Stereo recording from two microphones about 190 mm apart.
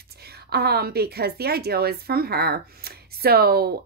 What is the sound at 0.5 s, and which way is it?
A woman's voice, 55° right (ahead or behind).